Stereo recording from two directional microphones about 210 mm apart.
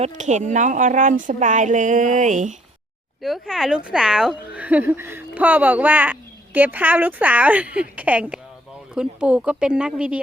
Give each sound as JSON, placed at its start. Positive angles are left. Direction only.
{"t": 0.0, "sound": "speech", "side_deg": -35}
{"t": 3.2, "sound": "a woman's voice", "side_deg": 0}